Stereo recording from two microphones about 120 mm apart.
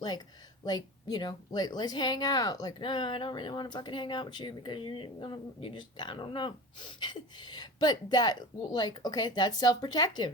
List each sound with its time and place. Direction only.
0.6 s a woman's voice: 35° left (ahead or behind)